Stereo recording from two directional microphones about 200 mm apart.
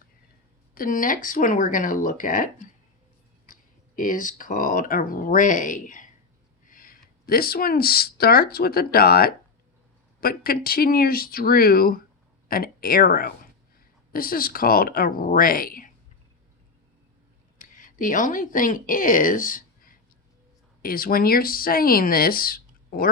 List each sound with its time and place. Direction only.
0.7 s speech: 45° left (ahead or behind)
17.6 s speech: 40° left (ahead or behind)